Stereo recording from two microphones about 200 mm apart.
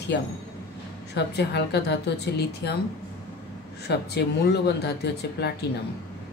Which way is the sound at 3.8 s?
55° left (ahead or behind).